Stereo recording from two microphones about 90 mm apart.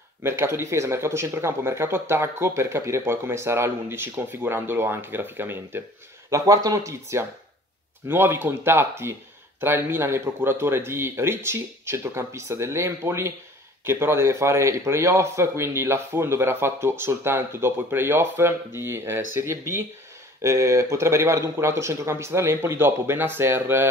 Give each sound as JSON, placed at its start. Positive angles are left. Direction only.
{"t": 0.2, "sound": "speech", "side_deg": -30}
{"t": 6.3, "sound": "speech", "side_deg": -40}